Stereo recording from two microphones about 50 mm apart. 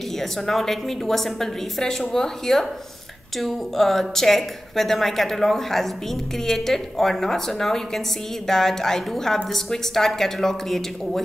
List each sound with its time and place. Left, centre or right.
0.2 s a woman's voice: centre